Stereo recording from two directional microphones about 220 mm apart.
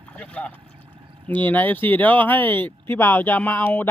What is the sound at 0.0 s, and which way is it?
Speech, 5° left (ahead or behind).